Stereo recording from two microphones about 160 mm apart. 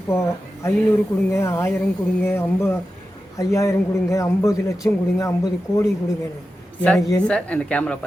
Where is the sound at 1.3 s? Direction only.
15° left (ahead or behind).